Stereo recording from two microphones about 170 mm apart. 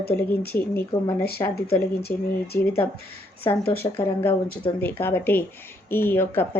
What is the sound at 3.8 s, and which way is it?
Speech, 30° left (ahead or behind).